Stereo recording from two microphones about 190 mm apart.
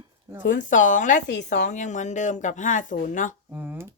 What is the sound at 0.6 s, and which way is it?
Speech, 40° left (ahead or behind).